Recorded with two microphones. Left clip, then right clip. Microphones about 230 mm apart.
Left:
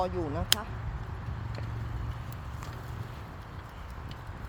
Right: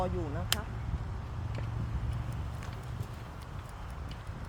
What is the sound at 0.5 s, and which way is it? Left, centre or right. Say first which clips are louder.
Speech: left 6 dB; left.